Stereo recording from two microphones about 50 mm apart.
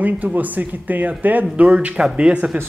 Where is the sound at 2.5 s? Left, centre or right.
Right.